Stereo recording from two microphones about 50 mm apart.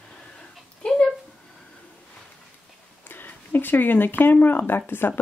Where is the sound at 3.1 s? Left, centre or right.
Left.